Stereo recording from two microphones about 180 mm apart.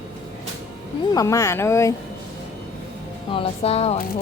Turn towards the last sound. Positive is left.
turn(degrees=35)  # may be behind; listen again after turning